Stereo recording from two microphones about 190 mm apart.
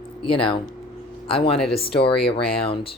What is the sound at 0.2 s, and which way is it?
Speech, 25° left (ahead or behind).